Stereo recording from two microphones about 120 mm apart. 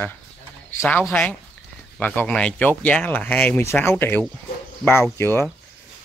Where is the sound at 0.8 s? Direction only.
15° left (ahead or behind).